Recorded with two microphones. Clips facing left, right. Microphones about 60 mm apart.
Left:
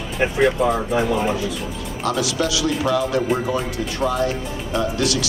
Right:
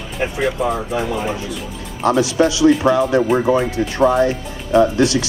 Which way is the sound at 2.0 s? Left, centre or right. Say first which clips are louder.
Right 7 dB; right.